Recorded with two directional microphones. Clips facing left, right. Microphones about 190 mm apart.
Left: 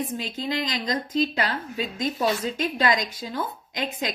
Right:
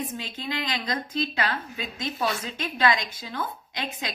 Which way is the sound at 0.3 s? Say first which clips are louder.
Left 3 dB; 40° left (ahead or behind).